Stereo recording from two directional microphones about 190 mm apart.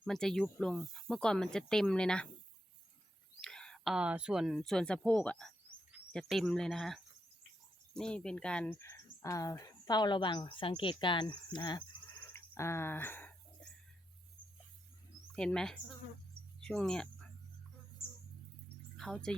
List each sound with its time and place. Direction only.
0.0 s speech: centre (ahead or behind)
3.4 s speech: 5° left (ahead or behind)
15.4 s speech: 5° left (ahead or behind)
16.6 s cricket: 5° left (ahead or behind)
18.9 s speech: centre (ahead or behind)